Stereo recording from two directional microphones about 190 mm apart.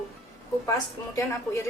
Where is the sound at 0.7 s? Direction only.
15° left (ahead or behind).